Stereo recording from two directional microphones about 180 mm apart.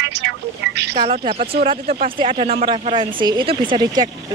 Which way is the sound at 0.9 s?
35° right (ahead or behind).